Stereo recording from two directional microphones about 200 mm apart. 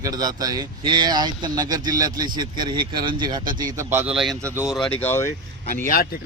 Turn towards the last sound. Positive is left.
turn(degrees=45)  # may be behind; listen again after turning